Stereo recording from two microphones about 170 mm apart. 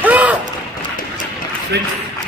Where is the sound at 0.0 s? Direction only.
10° right (ahead or behind).